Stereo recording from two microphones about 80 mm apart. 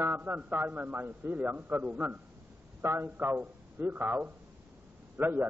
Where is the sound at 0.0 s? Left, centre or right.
Right.